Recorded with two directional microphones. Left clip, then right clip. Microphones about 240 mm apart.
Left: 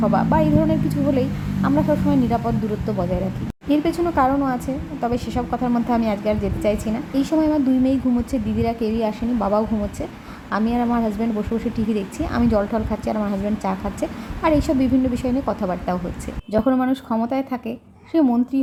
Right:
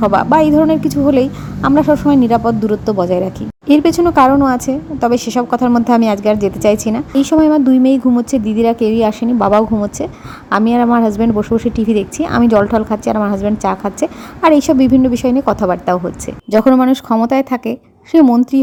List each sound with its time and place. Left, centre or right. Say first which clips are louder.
0.0 s a woman's voice: right 9 dB; right